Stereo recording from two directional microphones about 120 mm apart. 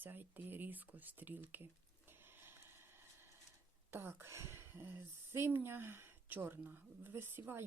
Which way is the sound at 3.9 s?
20° right (ahead or behind).